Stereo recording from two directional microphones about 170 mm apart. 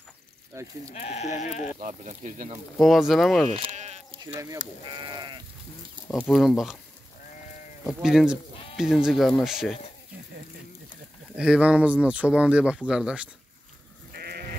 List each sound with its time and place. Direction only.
0.5 s speech: 15° right (ahead or behind)
0.9 s speech: 40° left (ahead or behind)
1.8 s speech: 50° right (ahead or behind)
2.8 s speech: centre (ahead or behind)
3.5 s speech: 30° right (ahead or behind)
4.9 s sheep: 25° right (ahead or behind)
6.0 s speech: 10° left (ahead or behind)
6.3 s speech: centre (ahead or behind)
8.0 s speech: centre (ahead or behind)
11.3 s speech: 5° right (ahead or behind)
14.1 s sheep: 65° right (ahead or behind)